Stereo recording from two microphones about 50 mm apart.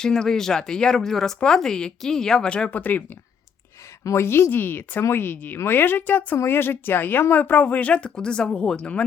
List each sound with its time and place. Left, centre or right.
0.0 s speech: centre
2.5 s speech: left
4.0 s a woman's voice: left
4.6 s a woman's voice: left
5.0 s speech: left
6.3 s a woman's voice: left